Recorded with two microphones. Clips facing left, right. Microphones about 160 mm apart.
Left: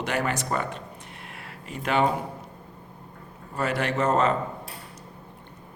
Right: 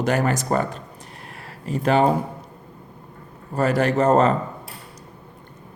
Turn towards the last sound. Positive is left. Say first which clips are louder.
# right 6 dB
turn(degrees=-40)  # may be behind; listen again after turning